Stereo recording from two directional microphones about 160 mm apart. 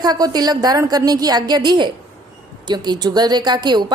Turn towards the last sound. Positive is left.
turn(degrees=-30)  # may be behind; listen again after turning